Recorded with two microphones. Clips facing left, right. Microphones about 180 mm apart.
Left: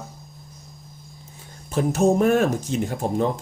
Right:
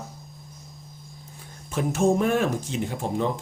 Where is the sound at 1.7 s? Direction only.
40° left (ahead or behind).